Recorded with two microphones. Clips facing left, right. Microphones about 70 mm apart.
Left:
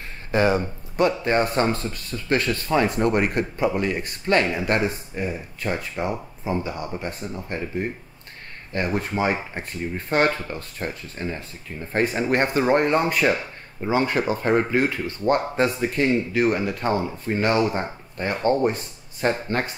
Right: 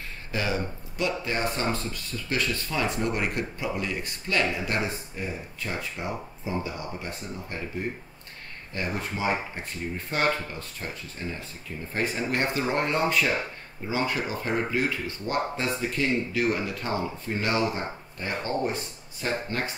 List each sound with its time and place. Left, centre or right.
0.3 s speech: left
8.7 s speech: left
11.9 s speech: left